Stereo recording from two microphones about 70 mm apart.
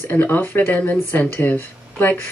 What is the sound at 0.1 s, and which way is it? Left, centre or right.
Speech, left.